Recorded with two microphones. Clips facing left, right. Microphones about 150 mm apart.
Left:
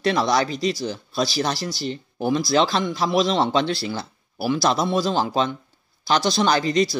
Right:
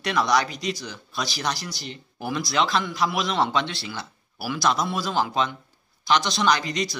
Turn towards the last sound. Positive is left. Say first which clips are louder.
# left 4 dB
turn(degrees=30)  # may be behind; listen again after turning